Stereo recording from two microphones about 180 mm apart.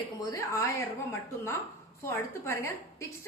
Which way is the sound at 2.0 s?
15° left (ahead or behind).